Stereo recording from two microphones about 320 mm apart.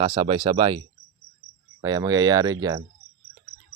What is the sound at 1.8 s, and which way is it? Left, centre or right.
Speech, centre.